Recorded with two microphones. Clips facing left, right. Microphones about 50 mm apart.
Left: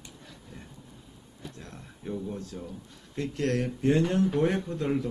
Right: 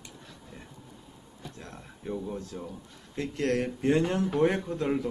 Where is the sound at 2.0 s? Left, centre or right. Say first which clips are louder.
Even; centre.